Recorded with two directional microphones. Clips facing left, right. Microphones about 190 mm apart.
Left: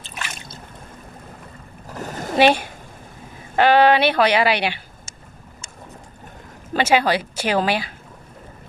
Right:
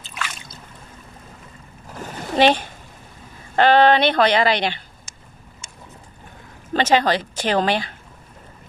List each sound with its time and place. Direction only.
1.9 s splash: 40° left (ahead or behind)
2.3 s speech: 10° left (ahead or behind)
6.7 s speech: 10° left (ahead or behind)